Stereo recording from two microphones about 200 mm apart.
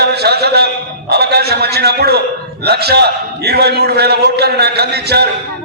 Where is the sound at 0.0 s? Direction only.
55° right (ahead or behind).